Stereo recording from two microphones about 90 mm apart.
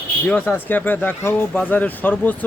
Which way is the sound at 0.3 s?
15° left (ahead or behind).